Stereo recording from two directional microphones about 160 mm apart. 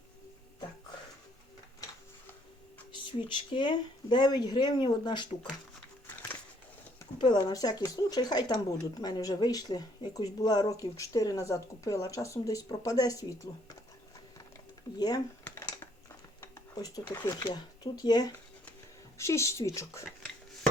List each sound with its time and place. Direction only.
2.9 s speech: 30° left (ahead or behind)
7.2 s speech: 30° left (ahead or behind)
14.9 s speech: 25° left (ahead or behind)
15.4 s computer keyboard: 15° left (ahead or behind)
16.4 s a sound: 25° left (ahead or behind)
17.1 s speech: 15° left (ahead or behind)
17.4 s speech: 25° left (ahead or behind)